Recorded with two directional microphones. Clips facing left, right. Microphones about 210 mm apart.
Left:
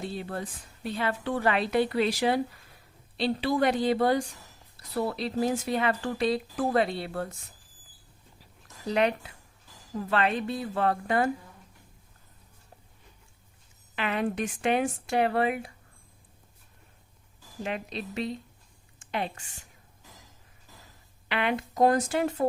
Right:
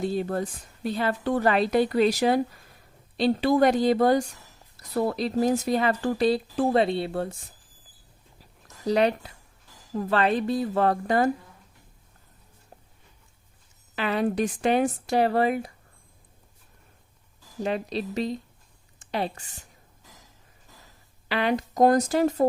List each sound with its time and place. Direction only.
0.0 s a woman's voice: 40° right (ahead or behind); by 7.3 s 25° right (ahead or behind)
8.6 s speech: 35° right (ahead or behind)
13.9 s speech: 35° right (ahead or behind)
17.6 s speech: 35° right (ahead or behind)
21.2 s speech: 35° right (ahead or behind)